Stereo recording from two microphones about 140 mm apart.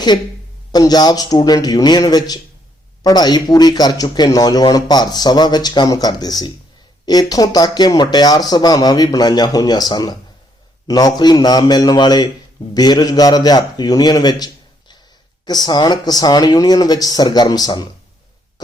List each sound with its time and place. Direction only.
0.7 s speech: 30° left (ahead or behind)